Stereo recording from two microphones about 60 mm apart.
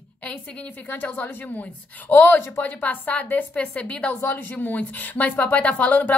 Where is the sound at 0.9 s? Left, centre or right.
Left.